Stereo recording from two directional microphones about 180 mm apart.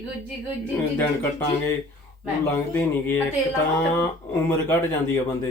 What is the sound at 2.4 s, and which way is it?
Speech, 15° left (ahead or behind).